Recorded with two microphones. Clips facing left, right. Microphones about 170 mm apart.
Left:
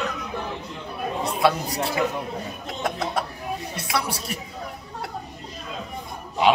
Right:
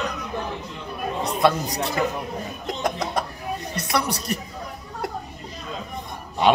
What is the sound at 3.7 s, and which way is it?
Speech, 5° left (ahead or behind).